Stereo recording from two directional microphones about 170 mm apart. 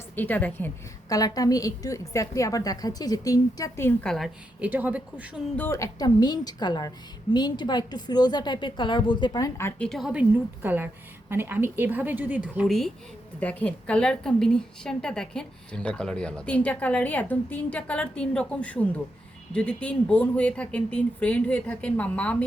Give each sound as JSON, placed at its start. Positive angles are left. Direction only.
{"t": 0.2, "sound": "a woman's voice", "side_deg": 10}
{"t": 1.1, "sound": "a woman's voice", "side_deg": 20}
{"t": 4.6, "sound": "speech", "side_deg": -10}
{"t": 5.5, "sound": "a woman's voice", "side_deg": 15}